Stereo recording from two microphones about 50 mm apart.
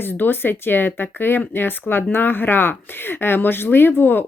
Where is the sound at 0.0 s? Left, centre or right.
Left.